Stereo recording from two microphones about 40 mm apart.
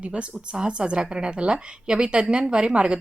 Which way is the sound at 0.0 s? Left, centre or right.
Right.